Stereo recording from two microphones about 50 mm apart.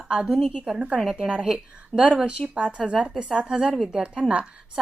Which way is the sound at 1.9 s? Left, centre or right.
Left.